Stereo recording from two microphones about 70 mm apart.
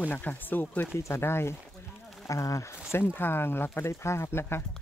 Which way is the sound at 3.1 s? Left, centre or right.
Left.